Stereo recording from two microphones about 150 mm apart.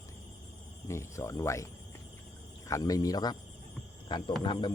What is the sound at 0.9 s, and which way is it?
Speech, 20° left (ahead or behind).